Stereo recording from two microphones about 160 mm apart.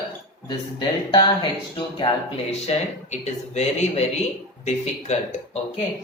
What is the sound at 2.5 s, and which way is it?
Speech, 45° left (ahead or behind).